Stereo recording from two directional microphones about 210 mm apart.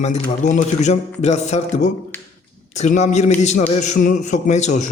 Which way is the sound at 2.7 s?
35° left (ahead or behind).